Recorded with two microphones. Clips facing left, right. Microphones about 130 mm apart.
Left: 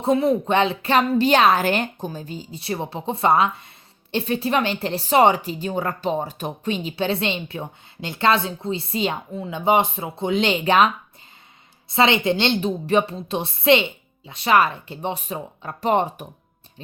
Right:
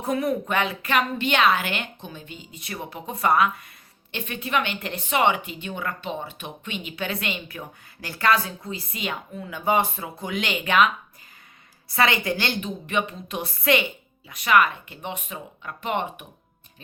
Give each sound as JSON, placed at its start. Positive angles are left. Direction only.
{"t": 0.0, "sound": "a woman's voice", "side_deg": 25}